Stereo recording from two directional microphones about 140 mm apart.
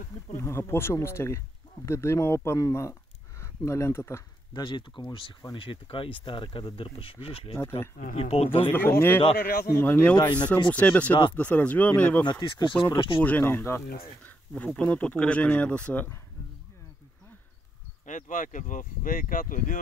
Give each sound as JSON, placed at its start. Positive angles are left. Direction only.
{"t": 0.4, "sound": "speech", "side_deg": 15}
{"t": 4.6, "sound": "speech", "side_deg": 35}
{"t": 8.6, "sound": "speech", "side_deg": 15}
{"t": 9.4, "sound": "a man's voice", "side_deg": 90}
{"t": 9.7, "sound": "speech", "side_deg": 15}
{"t": 12.3, "sound": "speech", "side_deg": 30}
{"t": 13.2, "sound": "speech", "side_deg": 15}
{"t": 14.2, "sound": "a sound", "side_deg": 10}
{"t": 14.7, "sound": "speech", "side_deg": 10}
{"t": 18.0, "sound": "speech", "side_deg": 65}